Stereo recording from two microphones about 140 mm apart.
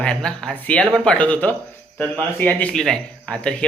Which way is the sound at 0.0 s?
5° left (ahead or behind).